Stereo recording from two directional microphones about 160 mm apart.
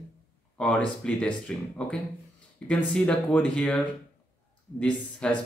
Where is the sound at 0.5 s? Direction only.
5° left (ahead or behind).